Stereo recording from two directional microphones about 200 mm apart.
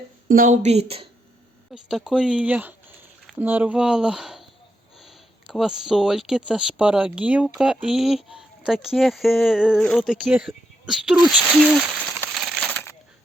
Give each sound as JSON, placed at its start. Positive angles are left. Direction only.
{"t": 0.3, "sound": "a woman's voice", "side_deg": -45}
{"t": 1.7, "sound": "speech", "side_deg": 0}
{"t": 12.3, "sound": "crushing", "side_deg": 0}